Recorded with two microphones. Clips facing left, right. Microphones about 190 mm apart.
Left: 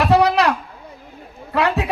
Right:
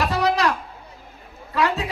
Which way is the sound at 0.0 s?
65° left (ahead or behind).